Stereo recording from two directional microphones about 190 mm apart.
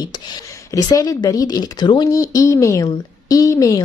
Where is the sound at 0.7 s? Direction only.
20° left (ahead or behind).